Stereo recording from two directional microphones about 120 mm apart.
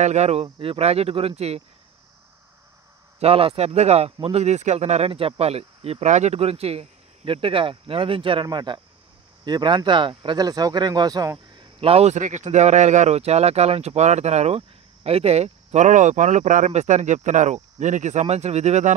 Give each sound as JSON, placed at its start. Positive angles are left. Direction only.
{"t": 0.0, "sound": "speech", "side_deg": -70}
{"t": 3.2, "sound": "speech", "side_deg": -55}
{"t": 11.5, "sound": "speech", "side_deg": -45}